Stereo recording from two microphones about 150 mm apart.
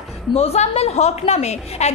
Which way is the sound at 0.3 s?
45° left (ahead or behind).